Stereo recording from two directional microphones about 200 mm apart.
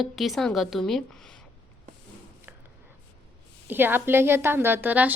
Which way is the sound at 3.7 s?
10° right (ahead or behind).